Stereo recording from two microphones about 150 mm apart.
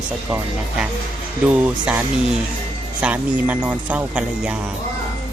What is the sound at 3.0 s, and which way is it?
Speech, 10° right (ahead or behind).